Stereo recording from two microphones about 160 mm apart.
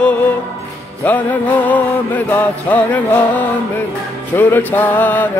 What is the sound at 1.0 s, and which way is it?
Music, 10° left (ahead or behind).